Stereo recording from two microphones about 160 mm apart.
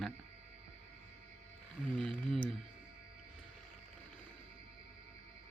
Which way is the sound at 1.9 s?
5° left (ahead or behind).